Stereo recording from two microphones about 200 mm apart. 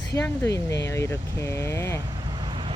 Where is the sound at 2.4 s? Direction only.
25° right (ahead or behind).